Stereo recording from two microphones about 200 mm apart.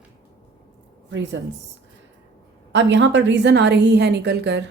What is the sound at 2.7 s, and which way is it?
A woman's voice, 65° right (ahead or behind).